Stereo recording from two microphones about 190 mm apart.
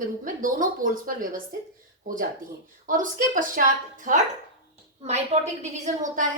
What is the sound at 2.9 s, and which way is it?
A woman's voice, 45° right (ahead or behind).